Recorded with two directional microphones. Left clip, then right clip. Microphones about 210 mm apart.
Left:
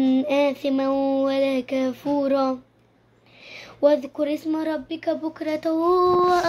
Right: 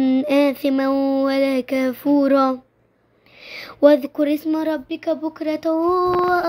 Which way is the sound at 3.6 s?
30° right (ahead or behind).